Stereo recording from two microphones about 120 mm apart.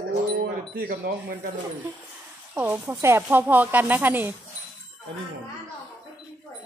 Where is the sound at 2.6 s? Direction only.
20° right (ahead or behind).